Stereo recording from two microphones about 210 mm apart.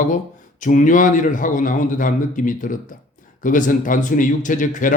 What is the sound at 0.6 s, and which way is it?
Speech, 35° left (ahead or behind).